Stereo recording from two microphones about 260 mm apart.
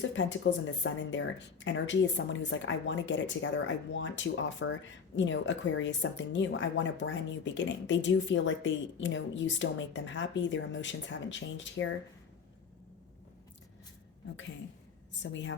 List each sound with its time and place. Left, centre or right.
0.1 s speech: left
15.2 s speech: left